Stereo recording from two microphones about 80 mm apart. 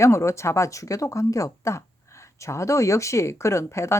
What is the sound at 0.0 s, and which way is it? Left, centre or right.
Speech, left.